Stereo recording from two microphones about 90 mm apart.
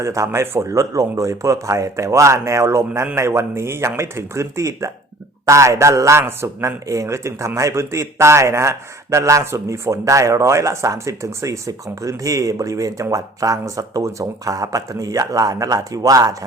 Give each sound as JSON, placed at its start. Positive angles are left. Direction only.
{"t": 0.0, "sound": "a man's voice", "side_deg": -35}